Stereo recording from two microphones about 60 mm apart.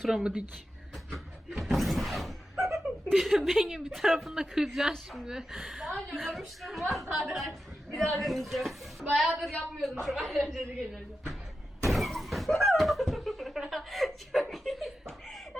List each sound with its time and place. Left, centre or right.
0.1 s speech: centre
1.1 s slam: centre
2.7 s chuckle: centre
3.7 s a woman's voice: centre
5.8 s a woman's voice: centre
11.9 s a sound: centre